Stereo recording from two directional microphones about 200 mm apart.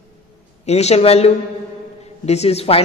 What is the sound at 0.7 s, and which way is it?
A woman's voice, 30° left (ahead or behind).